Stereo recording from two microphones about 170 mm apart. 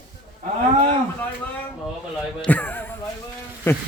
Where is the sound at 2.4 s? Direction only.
10° left (ahead or behind).